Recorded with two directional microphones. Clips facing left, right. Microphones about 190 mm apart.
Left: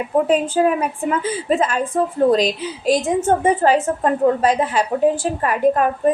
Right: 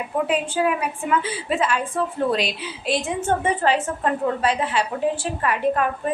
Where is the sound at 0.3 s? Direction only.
40° left (ahead or behind).